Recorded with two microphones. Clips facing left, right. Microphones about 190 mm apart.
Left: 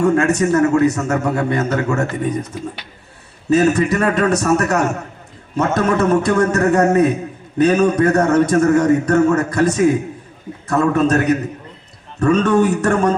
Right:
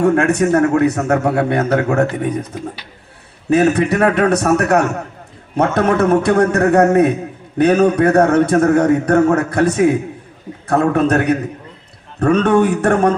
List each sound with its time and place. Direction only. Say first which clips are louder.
0.0 s a man's voice: right 1 dB; 60° right (ahead or behind)
3.5 s a man's voice: right 1 dB; 60° right (ahead or behind)